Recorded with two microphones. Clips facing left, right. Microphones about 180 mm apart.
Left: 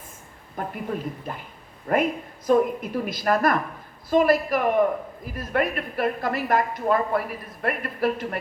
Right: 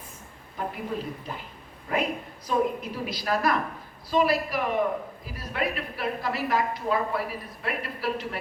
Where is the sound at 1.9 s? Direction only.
55° left (ahead or behind).